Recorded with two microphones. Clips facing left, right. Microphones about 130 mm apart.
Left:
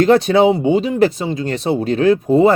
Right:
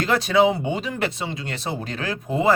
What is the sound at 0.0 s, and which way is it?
Speech, 35° left (ahead or behind).